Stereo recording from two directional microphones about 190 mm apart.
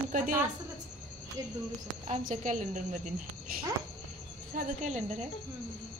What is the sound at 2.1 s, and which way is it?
Speech, 40° right (ahead or behind).